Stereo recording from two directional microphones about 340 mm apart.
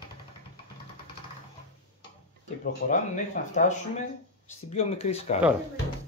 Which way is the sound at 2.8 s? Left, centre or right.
Left.